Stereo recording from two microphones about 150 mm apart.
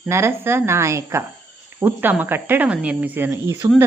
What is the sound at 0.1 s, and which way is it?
Speech, 15° right (ahead or behind).